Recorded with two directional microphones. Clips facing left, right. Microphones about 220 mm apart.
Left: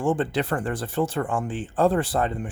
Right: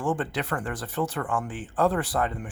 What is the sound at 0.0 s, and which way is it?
Speech, 25° left (ahead or behind).